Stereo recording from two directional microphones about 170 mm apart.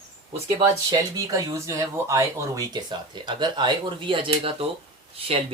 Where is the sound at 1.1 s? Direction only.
20° right (ahead or behind).